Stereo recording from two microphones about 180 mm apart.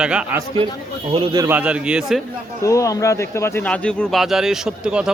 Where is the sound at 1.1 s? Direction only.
25° right (ahead or behind).